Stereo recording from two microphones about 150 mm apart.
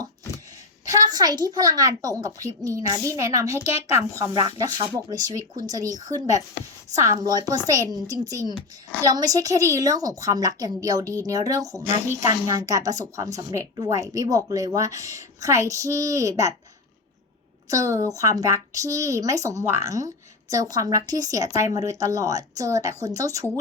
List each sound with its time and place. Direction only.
0.9 s a woman's voice: 25° right (ahead or behind)
17.7 s a woman's voice: 20° right (ahead or behind)